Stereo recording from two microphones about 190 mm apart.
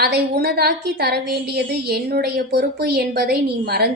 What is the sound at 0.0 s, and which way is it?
A woman's voice, 60° right (ahead or behind).